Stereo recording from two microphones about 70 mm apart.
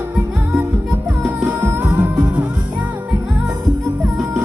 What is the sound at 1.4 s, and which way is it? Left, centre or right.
Music, right.